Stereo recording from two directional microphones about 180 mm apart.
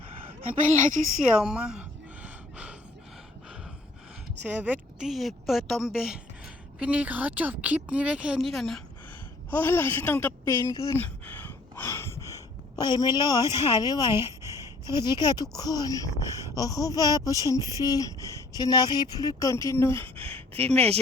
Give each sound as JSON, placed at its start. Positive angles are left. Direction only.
{"t": 1.4, "sound": "a sound", "side_deg": -5}
{"t": 4.4, "sound": "a woman's voice", "side_deg": -10}
{"t": 20.1, "sound": "speech", "side_deg": -30}